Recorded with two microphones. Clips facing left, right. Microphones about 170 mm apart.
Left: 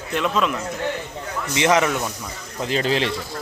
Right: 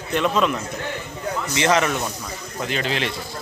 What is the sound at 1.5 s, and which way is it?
Speech, 20° left (ahead or behind).